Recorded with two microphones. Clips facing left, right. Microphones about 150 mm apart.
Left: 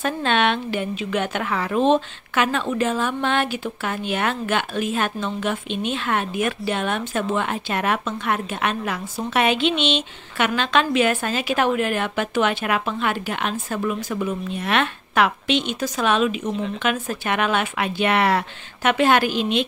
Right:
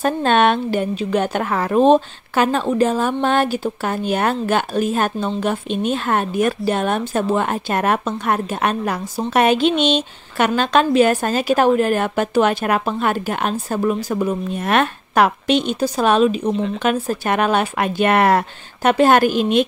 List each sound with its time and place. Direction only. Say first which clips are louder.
0.0 s a woman's voice: right 5 dB; 40° right (ahead or behind)